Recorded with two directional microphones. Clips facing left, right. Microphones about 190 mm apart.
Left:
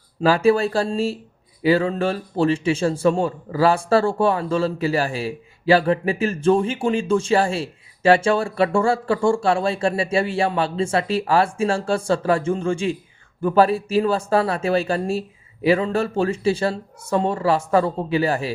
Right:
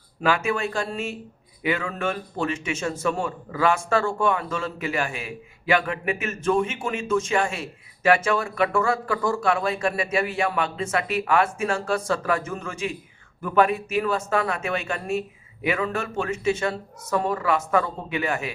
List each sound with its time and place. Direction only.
0.2 s a man's voice: 35° left (ahead or behind)